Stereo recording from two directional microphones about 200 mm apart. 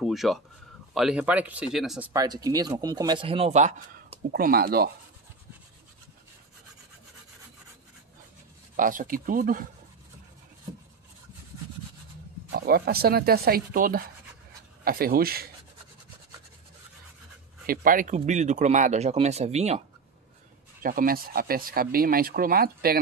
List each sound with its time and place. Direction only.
0.0 s speech: centre (ahead or behind)
2.1 s speech: 20° right (ahead or behind)
4.3 s speech: 50° right (ahead or behind)
8.7 s speech: 40° right (ahead or behind)
12.5 s speech: 50° right (ahead or behind)
17.6 s speech: 45° right (ahead or behind)
20.8 s speech: 45° right (ahead or behind)